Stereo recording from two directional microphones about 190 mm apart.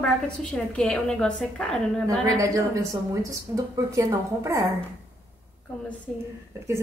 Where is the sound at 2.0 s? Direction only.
15° right (ahead or behind).